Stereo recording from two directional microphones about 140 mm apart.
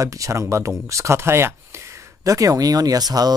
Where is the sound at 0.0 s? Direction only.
25° right (ahead or behind).